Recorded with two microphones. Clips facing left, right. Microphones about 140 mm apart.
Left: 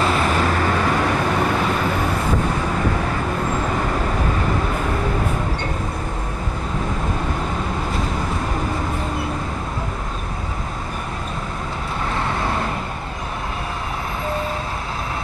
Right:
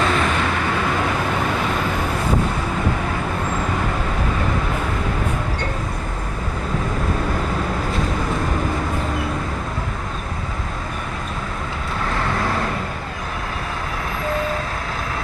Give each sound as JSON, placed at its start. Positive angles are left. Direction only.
{"t": 0.0, "sound": "vehicle", "side_deg": 35}